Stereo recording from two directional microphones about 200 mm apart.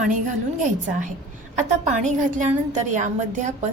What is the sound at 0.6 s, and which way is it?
Speech, 40° right (ahead or behind).